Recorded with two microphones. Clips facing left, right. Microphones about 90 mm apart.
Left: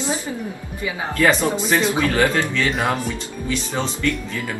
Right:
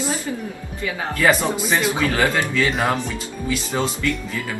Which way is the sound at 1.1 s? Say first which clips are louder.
Left 1 dB; 10° right (ahead or behind).